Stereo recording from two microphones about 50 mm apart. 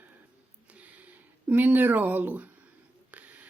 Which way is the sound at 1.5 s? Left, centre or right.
Right.